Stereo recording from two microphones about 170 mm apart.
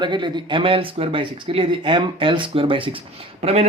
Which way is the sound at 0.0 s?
25° right (ahead or behind).